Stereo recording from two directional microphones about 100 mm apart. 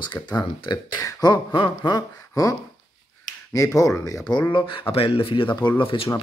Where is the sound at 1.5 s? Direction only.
50° left (ahead or behind).